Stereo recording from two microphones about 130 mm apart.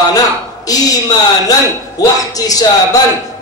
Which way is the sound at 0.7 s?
30° left (ahead or behind).